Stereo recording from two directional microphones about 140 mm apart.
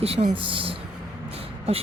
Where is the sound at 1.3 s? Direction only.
45° right (ahead or behind).